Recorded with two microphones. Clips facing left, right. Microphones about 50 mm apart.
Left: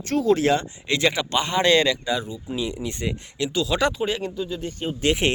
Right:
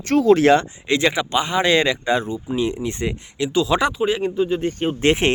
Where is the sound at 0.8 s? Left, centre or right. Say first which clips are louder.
Right 3 dB; right.